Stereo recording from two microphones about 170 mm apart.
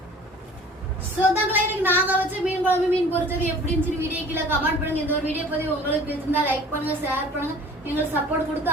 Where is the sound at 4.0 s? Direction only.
15° right (ahead or behind).